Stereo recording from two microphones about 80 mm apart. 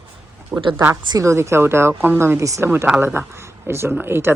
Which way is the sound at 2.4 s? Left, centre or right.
Right.